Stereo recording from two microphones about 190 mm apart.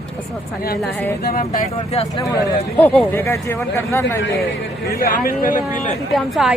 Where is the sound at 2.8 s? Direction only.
10° left (ahead or behind).